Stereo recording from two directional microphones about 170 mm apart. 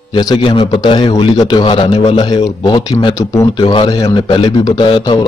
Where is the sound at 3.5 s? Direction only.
30° left (ahead or behind).